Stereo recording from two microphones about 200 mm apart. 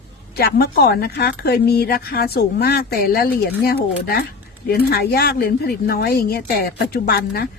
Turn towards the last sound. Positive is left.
turn(degrees=50)  # may be behind; listen again after turning